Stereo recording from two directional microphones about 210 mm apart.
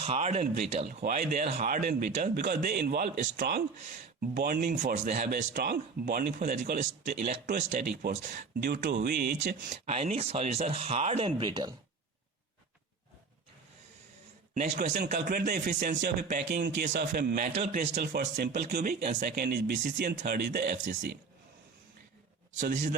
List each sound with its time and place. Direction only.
0.0 s speech: 30° right (ahead or behind); by 4.7 s 50° right (ahead or behind)
4.7 s speech: 35° right (ahead or behind); by 11.7 s 20° right (ahead or behind)
14.5 s speech: 40° right (ahead or behind)
16.6 s speech: 55° right (ahead or behind); by 17.8 s 35° right (ahead or behind)
17.9 s speech: 50° right (ahead or behind)
22.5 s speech: 40° right (ahead or behind)